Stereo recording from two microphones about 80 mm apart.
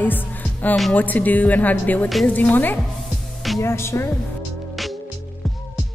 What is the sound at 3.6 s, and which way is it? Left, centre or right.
Speech, left.